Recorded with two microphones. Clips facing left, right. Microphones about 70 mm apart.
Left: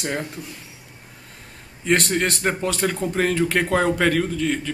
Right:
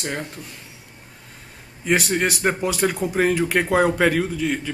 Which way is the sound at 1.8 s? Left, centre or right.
Centre.